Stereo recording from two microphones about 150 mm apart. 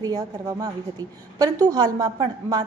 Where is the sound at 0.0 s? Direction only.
25° right (ahead or behind).